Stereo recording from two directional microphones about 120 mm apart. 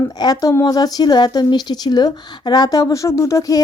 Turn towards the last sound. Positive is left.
turn(degrees=30)  # may be behind; listen again after turning